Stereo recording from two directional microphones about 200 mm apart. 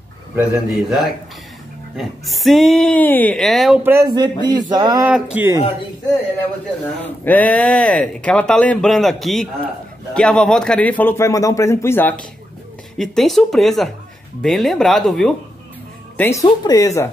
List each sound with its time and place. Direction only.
0.4 s speech: 5° right (ahead or behind); by 5.0 s 20° right (ahead or behind)
5.0 s speech: 10° right (ahead or behind)
7.2 s a man's voice: 5° left (ahead or behind)
16.2 s a man's voice: 15° left (ahead or behind)